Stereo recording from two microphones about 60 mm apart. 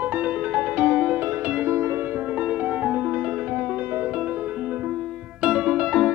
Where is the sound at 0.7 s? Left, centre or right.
Centre.